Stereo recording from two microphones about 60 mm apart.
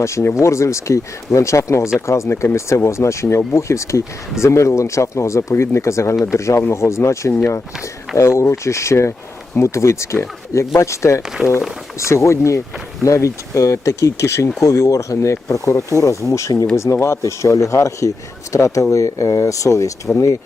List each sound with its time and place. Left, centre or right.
0.0 s speech: left
6.6 s speech: left
11.4 s speech: centre
11.9 s speech: left